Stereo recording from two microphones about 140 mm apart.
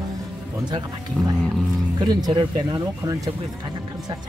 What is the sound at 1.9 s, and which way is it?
Speech, 30° right (ahead or behind).